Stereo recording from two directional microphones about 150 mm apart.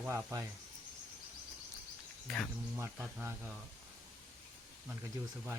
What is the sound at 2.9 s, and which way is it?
Speech, 15° right (ahead or behind).